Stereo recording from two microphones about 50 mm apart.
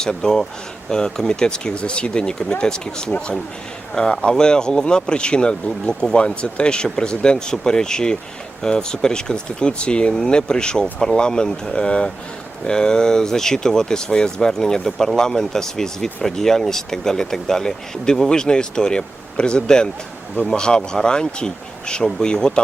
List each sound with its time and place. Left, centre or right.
0.0 s speech: centre